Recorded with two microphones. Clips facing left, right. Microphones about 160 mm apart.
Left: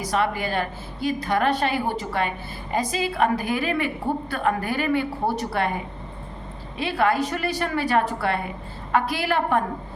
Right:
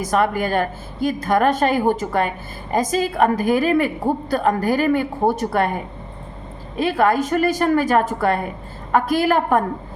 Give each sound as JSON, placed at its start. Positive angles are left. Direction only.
{"t": 0.0, "sound": "a woman's voice", "side_deg": -50}
{"t": 6.7, "sound": "a woman's voice", "side_deg": -45}